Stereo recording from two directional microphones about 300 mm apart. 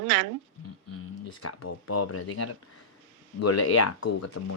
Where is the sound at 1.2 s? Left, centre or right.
Left.